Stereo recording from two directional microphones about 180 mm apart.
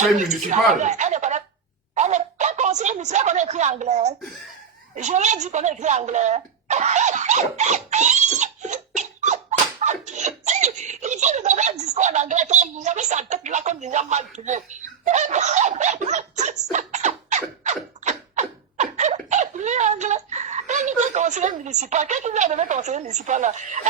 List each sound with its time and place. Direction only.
0.2 s speech: 40° right (ahead or behind)
16.7 s a sound: 40° right (ahead or behind)
18.0 s laughter: 40° right (ahead or behind)